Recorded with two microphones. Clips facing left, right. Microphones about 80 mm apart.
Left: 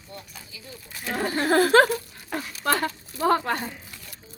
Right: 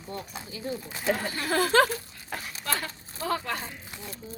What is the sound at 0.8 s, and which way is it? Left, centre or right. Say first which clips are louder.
Speech: right 6 dB; right.